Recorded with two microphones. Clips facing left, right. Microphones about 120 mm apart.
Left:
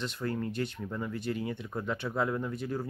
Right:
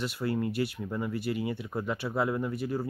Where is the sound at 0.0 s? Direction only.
5° right (ahead or behind).